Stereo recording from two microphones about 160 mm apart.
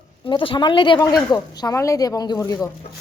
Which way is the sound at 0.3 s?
30° left (ahead or behind).